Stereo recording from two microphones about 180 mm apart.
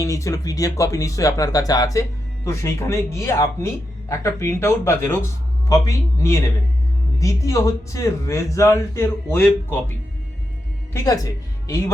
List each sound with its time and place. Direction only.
0.0 s speech: 15° left (ahead or behind)
10.9 s speech: 20° left (ahead or behind)